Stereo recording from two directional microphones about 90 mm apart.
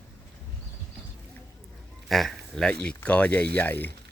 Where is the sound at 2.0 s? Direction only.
Centre (ahead or behind).